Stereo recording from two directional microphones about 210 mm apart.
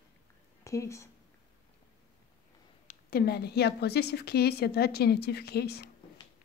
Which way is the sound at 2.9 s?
45° left (ahead or behind).